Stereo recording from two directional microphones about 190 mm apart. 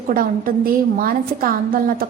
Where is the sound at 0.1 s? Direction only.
50° right (ahead or behind).